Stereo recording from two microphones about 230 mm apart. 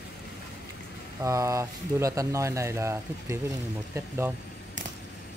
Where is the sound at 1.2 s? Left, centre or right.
Centre.